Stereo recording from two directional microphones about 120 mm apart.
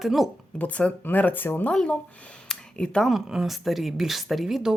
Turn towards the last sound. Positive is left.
turn(degrees=-5)  # may be behind; listen again after turning